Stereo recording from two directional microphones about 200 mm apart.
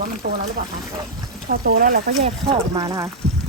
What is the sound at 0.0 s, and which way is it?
Speech, 45° right (ahead or behind).